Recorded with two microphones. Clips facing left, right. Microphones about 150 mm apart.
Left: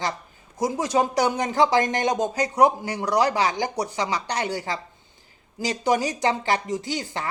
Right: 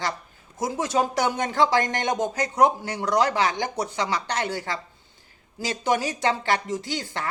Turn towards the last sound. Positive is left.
turn(degrees=15)  # may be behind; listen again after turning